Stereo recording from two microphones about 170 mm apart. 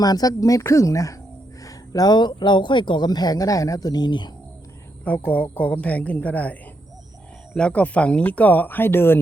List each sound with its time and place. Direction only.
0.0 s speech: 20° left (ahead or behind)
5.0 s speech: 10° left (ahead or behind)